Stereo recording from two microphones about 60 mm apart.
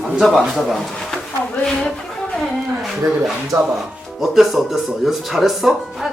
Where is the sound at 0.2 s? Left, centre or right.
Centre.